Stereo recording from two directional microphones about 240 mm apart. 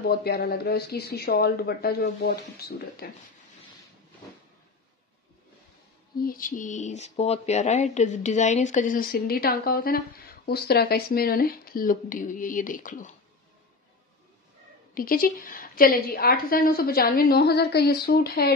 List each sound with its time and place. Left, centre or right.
0.0 s speech: left
6.1 s speech: left
15.0 s speech: left